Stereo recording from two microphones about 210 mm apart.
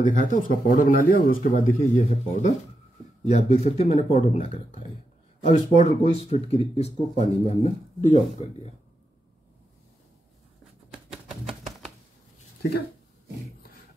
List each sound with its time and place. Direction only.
0.0 s speech: 40° left (ahead or behind)
10.9 s typewriter: centre (ahead or behind)